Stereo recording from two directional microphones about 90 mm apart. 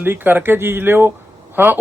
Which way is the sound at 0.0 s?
20° right (ahead or behind).